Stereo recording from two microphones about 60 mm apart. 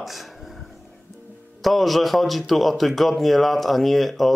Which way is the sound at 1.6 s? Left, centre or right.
Centre.